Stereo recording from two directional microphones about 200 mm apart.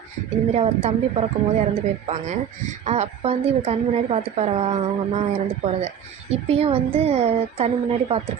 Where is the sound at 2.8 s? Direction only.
35° right (ahead or behind).